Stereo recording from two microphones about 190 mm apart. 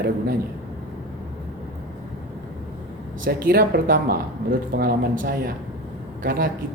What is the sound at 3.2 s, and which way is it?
Speech, 50° right (ahead or behind).